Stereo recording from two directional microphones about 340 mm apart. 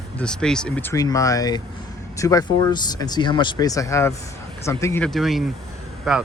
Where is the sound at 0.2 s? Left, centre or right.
Centre.